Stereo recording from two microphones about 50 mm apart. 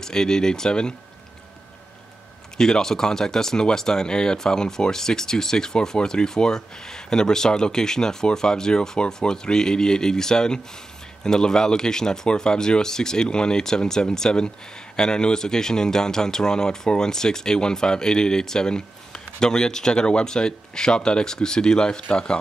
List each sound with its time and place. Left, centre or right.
0.0 s speech: centre
2.5 s speech: centre